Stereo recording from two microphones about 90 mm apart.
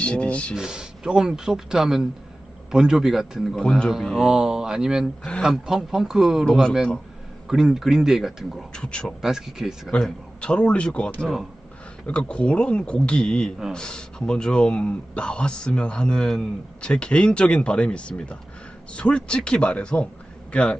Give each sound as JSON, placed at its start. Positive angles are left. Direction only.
{"t": 0.0, "sound": "speech", "side_deg": 15}
{"t": 0.5, "sound": "speech", "side_deg": -10}
{"t": 3.9, "sound": "speech", "side_deg": -5}
{"t": 6.4, "sound": "speech", "side_deg": 10}
{"t": 7.4, "sound": "speech", "side_deg": -5}
{"t": 8.7, "sound": "speech", "side_deg": 10}
{"t": 9.2, "sound": "speech", "side_deg": -5}
{"t": 9.9, "sound": "a man's voice", "side_deg": 10}